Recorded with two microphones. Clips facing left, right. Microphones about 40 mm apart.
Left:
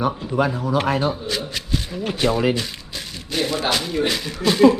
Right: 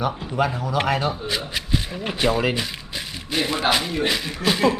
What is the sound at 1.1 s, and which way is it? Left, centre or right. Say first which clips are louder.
Speech: even; centre.